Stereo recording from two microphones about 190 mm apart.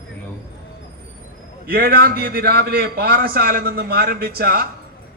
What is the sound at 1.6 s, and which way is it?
A man's voice, 50° right (ahead or behind).